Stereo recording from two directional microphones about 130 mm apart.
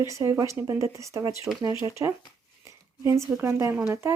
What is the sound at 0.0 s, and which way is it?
Speech, 25° right (ahead or behind).